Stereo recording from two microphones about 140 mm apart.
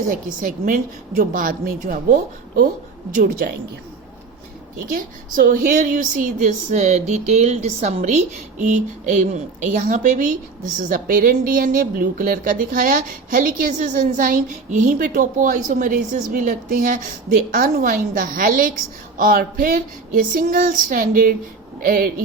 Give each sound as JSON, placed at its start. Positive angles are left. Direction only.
{"t": 0.1, "sound": "a woman's voice", "side_deg": -75}
{"t": 3.1, "sound": "a woman's voice", "side_deg": -75}
{"t": 4.9, "sound": "a woman's voice", "side_deg": -80}
{"t": 17.5, "sound": "a woman's voice", "side_deg": -80}
{"t": 19.1, "sound": "a sound", "side_deg": -80}
{"t": 21.8, "sound": "speech", "side_deg": -90}